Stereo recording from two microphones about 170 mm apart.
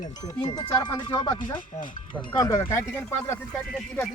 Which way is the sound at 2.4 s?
20° left (ahead or behind).